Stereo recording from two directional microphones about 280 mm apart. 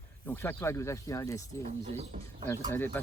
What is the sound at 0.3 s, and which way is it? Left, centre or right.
Speech, centre.